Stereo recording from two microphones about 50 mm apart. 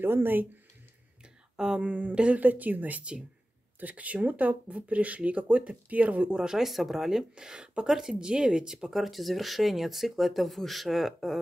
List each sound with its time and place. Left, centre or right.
0.0 s speech: right
1.8 s speech: right
6.4 s speech: centre
8.9 s speech: centre